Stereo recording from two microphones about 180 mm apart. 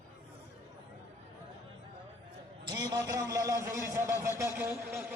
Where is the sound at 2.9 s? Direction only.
20° right (ahead or behind).